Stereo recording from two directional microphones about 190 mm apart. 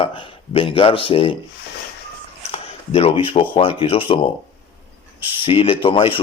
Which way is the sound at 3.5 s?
25° left (ahead or behind).